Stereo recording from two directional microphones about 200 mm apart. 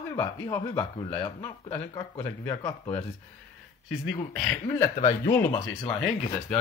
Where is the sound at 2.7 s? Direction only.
30° left (ahead or behind).